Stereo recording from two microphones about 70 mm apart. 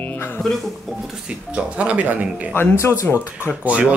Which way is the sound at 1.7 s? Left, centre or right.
Centre.